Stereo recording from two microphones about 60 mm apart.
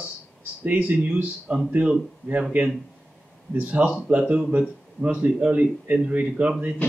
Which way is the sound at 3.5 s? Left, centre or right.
Right.